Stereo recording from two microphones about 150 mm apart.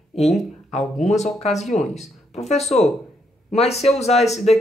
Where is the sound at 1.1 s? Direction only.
50° left (ahead or behind).